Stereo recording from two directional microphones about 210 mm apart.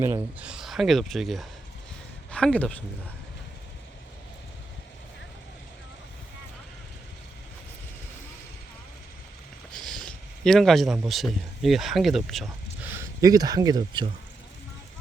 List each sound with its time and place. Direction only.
0.0 s speech: 10° right (ahead or behind)
9.8 s a sound: 5° left (ahead or behind)
11.0 s speech: centre (ahead or behind)
12.9 s speech: 15° right (ahead or behind)